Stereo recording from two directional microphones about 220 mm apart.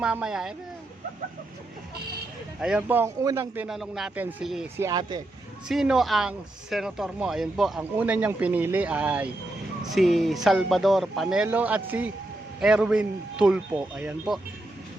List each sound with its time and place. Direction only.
0.0 s speech: 5° right (ahead or behind)
2.6 s a man's voice: 5° right (ahead or behind)
4.9 s a man's voice: 20° right (ahead or behind)
5.6 s speech: 5° right (ahead or behind)